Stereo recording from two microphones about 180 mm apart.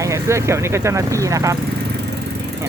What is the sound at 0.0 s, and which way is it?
Speech, 15° right (ahead or behind).